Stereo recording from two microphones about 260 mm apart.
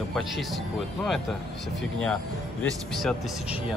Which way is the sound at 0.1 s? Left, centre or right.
Centre.